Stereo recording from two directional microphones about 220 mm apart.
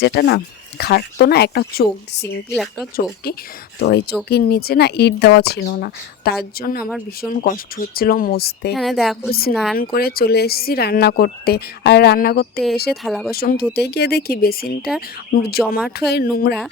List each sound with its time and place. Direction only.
0.0 s speech: 50° left (ahead or behind)
2.5 s a woman's voice: centre (ahead or behind)
3.2 s speech: 45° left (ahead or behind)
8.7 s a woman's voice: centre (ahead or behind)
9.7 s speech: 45° left (ahead or behind)
13.0 s a woman's voice: centre (ahead or behind)
13.3 s speech: 45° left (ahead or behind)